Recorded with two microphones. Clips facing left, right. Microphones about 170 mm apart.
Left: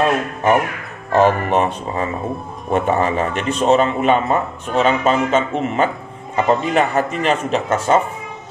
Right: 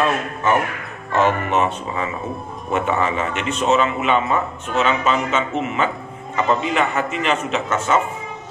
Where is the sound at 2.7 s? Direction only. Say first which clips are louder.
Left 3 dB; 40° left (ahead or behind).